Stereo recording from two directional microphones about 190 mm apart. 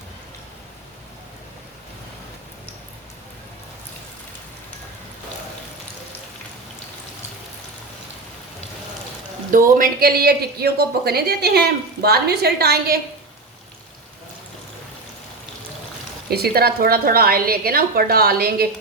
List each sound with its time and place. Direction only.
9.5 s speech: 45° right (ahead or behind)
16.3 s a woman's voice: 55° right (ahead or behind)